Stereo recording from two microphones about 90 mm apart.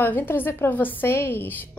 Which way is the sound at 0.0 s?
20° left (ahead or behind).